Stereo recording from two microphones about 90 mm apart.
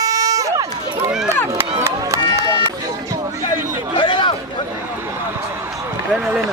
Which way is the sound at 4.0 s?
60° left (ahead or behind).